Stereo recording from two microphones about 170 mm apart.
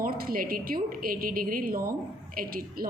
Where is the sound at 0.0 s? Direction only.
60° right (ahead or behind).